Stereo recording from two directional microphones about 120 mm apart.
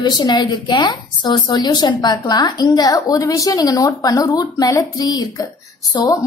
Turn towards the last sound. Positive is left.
turn(degrees=30)  # may be behind; listen again after turning